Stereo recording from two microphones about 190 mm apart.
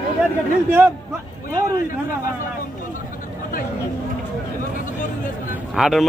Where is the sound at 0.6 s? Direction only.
10° right (ahead or behind).